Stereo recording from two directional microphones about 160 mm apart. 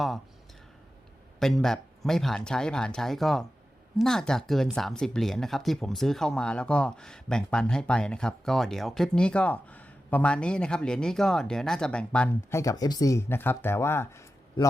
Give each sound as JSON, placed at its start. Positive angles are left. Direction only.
{"t": 1.4, "sound": "speech", "side_deg": 0}